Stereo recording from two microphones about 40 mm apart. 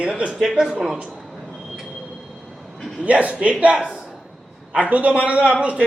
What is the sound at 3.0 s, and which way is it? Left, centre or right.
A man's voice, right.